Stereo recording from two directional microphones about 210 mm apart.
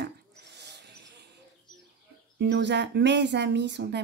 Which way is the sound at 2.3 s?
55° right (ahead or behind).